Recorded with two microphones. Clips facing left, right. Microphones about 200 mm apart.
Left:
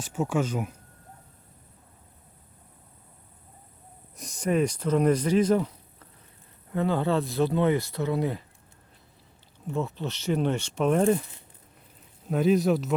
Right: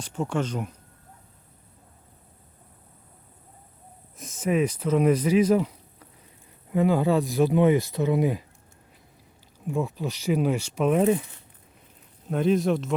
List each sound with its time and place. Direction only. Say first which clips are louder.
0.0 s speech: left 1 dB; 5° left (ahead or behind)
4.2 s speech: right 1 dB; centre (ahead or behind)
9.6 s speech: right 2 dB; 10° right (ahead or behind)
12.3 s speech: even; centre (ahead or behind)